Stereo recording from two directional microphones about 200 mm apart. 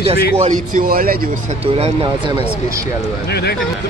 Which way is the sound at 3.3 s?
55° left (ahead or behind).